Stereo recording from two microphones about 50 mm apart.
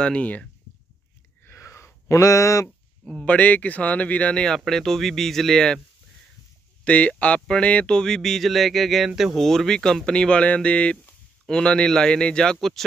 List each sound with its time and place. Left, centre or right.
0.0 s speech: left
1.6 s a sound: left
2.0 s speech: left
3.3 s speech: left
4.6 s speech: centre
6.8 s speech: left; by 9.4 s centre
9.4 s a man's voice: centre